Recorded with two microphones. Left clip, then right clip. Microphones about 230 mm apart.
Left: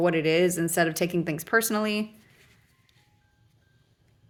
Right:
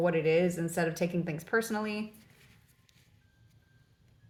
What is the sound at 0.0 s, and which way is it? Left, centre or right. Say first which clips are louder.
Speech: left 4 dB; left.